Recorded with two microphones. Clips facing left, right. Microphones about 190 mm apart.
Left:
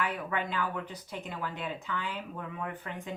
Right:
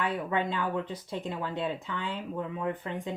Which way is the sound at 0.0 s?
25° right (ahead or behind).